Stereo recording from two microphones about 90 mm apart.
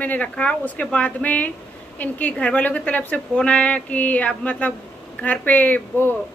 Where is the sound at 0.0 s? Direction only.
15° left (ahead or behind).